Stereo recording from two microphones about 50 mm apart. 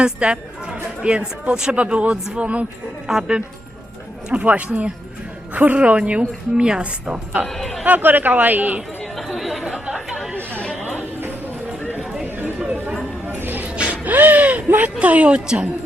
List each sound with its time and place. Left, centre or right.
0.0 s a woman's voice: right
3.1 s speech: centre
4.3 s a woman's voice: right
7.5 s a sound: centre
7.9 s speech: right
9.1 s chatter: centre
9.8 s chatter: centre
10.5 s chatter: left
10.8 s a sound: right
12.2 s clip-clop: right
13.2 s a sound: right
13.7 s a sound: right
14.9 s a woman's voice: right